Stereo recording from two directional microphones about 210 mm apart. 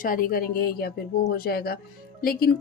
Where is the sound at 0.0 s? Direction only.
45° left (ahead or behind).